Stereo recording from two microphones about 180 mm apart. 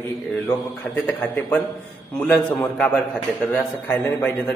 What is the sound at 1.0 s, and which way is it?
A man's voice, 5° left (ahead or behind).